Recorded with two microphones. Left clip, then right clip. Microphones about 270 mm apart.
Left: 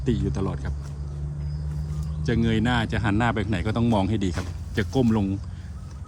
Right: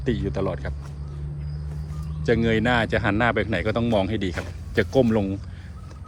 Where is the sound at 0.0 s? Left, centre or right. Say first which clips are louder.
Right 2 dB; centre.